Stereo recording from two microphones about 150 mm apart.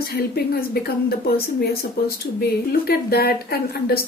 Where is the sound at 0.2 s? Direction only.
90° left.